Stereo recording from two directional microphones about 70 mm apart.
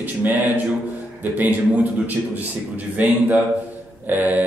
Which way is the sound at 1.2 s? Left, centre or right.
Right.